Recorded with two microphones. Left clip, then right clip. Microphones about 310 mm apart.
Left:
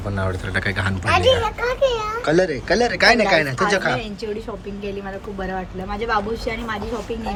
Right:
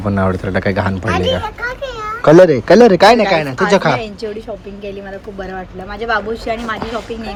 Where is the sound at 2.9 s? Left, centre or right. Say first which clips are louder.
Right 6 dB; centre.